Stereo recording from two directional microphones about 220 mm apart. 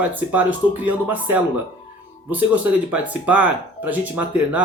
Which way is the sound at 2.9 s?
5° right (ahead or behind).